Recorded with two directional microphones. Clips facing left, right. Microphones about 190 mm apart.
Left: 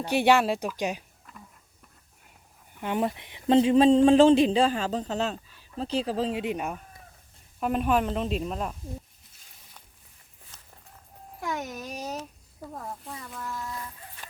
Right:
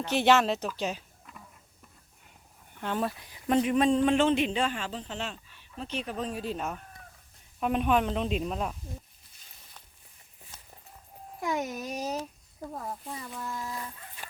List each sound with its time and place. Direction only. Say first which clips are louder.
0.0 s speech: left 2 dB; 10° left (ahead or behind)
2.7 s speech: left 3 dB; 15° left (ahead or behind); by 6.3 s 30° left (ahead or behind)
6.4 s speech: left 3 dB; 15° left (ahead or behind)
7.6 s a woman's voice: left 1 dB; centre (ahead or behind)
11.3 s a woman's voice: right 2 dB; 5° right (ahead or behind)
13.7 s a sound: even; 15° right (ahead or behind)